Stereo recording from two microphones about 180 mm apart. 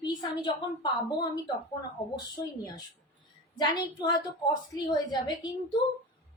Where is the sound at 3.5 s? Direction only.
20° left (ahead or behind).